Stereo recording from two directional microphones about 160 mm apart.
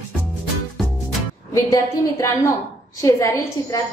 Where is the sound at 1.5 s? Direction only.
20° left (ahead or behind).